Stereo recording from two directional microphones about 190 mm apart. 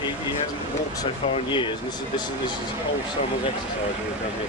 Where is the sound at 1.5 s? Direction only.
25° left (ahead or behind).